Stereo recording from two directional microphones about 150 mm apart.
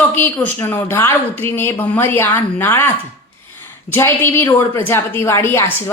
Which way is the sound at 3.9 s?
15° left (ahead or behind).